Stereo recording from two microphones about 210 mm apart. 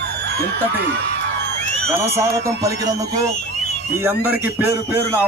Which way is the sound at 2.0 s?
15° right (ahead or behind).